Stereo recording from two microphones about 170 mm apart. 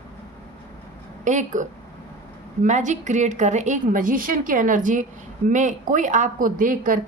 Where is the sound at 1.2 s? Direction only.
45° right (ahead or behind).